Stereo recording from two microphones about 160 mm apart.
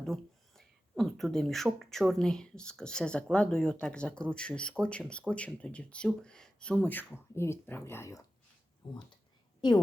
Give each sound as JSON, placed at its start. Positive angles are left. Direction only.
{"t": 0.0, "sound": "speech", "side_deg": 0}
{"t": 9.6, "sound": "a woman's voice", "side_deg": 25}